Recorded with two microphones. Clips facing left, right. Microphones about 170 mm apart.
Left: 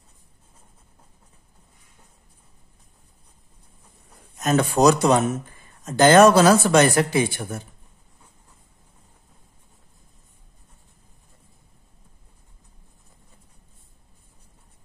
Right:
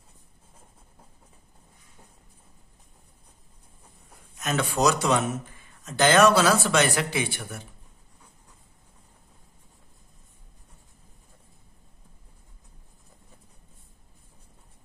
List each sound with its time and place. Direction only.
4.4 s speech: 40° left (ahead or behind)